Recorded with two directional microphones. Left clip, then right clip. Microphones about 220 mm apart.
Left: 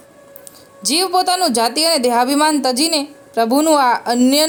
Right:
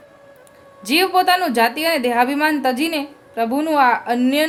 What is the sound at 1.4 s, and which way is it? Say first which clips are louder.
A woman's voice: left 2 dB; 25° left (ahead or behind).